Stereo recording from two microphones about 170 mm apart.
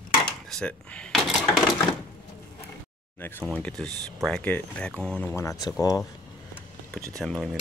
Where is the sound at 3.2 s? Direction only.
15° left (ahead or behind).